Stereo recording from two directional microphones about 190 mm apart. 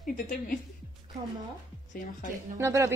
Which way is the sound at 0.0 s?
50° left (ahead or behind).